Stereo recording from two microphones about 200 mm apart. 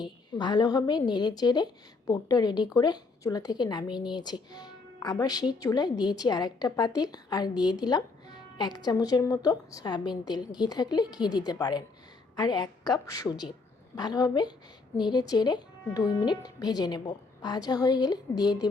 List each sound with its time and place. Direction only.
0.0 s a woman's voice: 20° left (ahead or behind)